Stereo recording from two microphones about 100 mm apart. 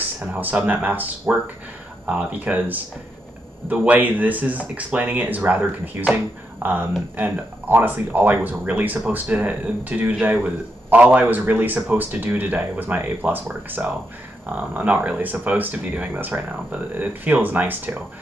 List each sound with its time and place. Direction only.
0.2 s speech: 15° right (ahead or behind)